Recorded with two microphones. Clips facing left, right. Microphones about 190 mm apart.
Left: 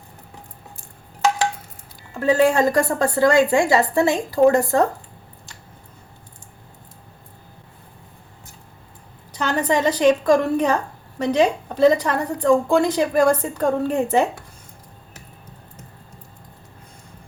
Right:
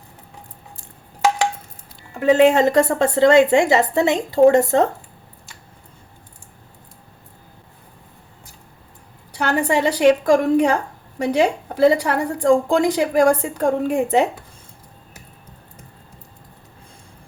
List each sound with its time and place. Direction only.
2.1 s a woman's voice: 20° right (ahead or behind)
9.3 s a woman's voice: 10° right (ahead or behind)